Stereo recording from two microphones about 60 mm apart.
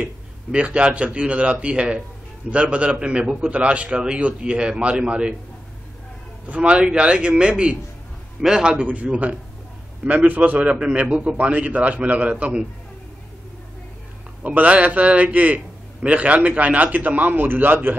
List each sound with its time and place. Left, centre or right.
0.0 s a man's voice: centre
6.4 s a man's voice: right
8.7 s a man's voice: right
14.4 s a man's voice: right